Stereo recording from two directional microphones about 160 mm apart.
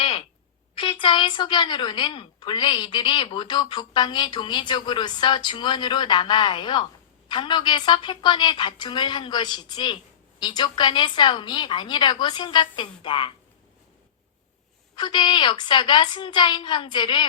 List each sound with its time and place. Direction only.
0.0 s a sound: 35° left (ahead or behind)
0.8 s a woman's voice: 35° left (ahead or behind)
14.9 s a woman's voice: 30° left (ahead or behind)